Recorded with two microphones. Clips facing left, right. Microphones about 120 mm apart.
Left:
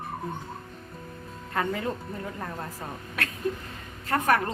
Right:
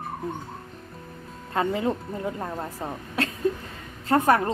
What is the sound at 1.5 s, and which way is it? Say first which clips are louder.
Speech: right 4 dB; 20° right (ahead or behind).